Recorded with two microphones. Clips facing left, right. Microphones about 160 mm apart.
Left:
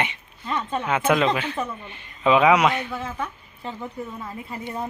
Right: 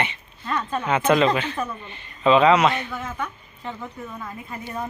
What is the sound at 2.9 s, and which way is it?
A woman's voice, 30° left (ahead or behind).